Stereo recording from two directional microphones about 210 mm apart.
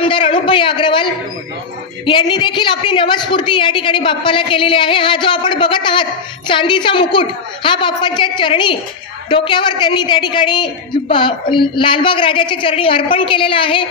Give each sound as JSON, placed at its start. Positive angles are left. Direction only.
{"t": 0.0, "sound": "a woman's voice", "side_deg": 25}
{"t": 2.0, "sound": "a woman's voice", "side_deg": 20}